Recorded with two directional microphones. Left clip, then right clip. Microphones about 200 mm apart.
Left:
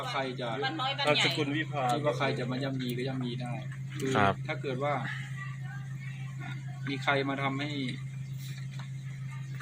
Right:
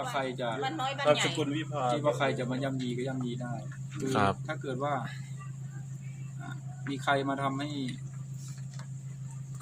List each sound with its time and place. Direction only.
0.1 s a man's voice: 45° right (ahead or behind)
1.4 s speech: 10° right (ahead or behind)
2.0 s a man's voice: 45° right (ahead or behind)
4.0 s speech: 5° right (ahead or behind)
6.9 s speech: 15° right (ahead or behind)